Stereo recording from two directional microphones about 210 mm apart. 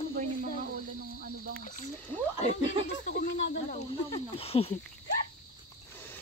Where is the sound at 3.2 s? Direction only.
45° left (ahead or behind).